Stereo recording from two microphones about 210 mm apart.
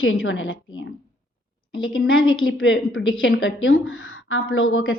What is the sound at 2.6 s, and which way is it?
A woman's voice, 65° left (ahead or behind).